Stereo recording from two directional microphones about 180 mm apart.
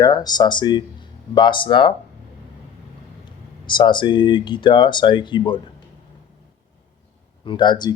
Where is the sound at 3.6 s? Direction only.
25° left (ahead or behind).